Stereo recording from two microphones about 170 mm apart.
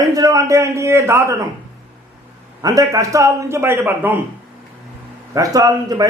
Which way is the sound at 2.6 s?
20° right (ahead or behind).